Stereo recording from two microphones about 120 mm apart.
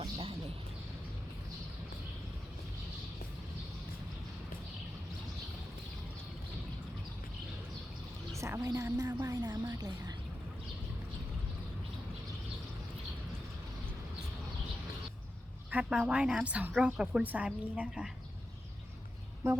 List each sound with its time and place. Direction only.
0.0 s a sound: 50° right (ahead or behind)
8.4 s a woman's voice: 25° right (ahead or behind)
15.7 s a woman's voice: 10° right (ahead or behind)
19.4 s a woman's voice: 25° right (ahead or behind)